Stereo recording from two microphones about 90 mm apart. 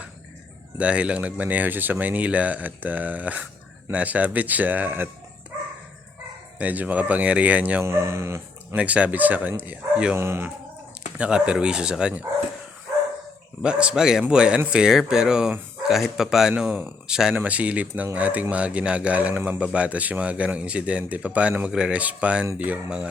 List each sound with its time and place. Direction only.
0.8 s speech: 15° right (ahead or behind)
6.6 s speech: 15° right (ahead or behind)
7.9 s speech: 30° right (ahead or behind)
8.7 s speech: 15° right (ahead or behind)
11.2 s speech: 10° right (ahead or behind)
13.6 s speech: 10° right (ahead or behind)